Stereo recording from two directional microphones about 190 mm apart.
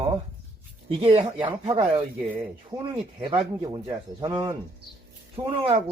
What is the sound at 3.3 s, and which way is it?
A man's voice, 25° right (ahead or behind).